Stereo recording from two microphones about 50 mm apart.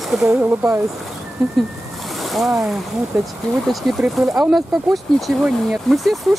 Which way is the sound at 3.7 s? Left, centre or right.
Centre.